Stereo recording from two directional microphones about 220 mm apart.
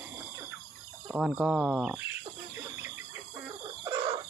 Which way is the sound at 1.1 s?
Centre (ahead or behind).